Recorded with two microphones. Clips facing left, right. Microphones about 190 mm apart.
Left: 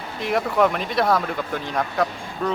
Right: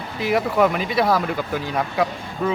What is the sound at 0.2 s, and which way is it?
Speech, 5° right (ahead or behind).